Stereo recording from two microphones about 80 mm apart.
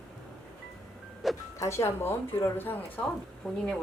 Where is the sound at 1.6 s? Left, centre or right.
Left.